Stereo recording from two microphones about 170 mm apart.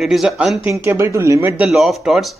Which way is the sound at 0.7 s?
15° right (ahead or behind).